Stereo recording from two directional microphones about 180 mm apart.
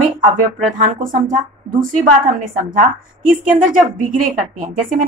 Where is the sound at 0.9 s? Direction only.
45° right (ahead or behind).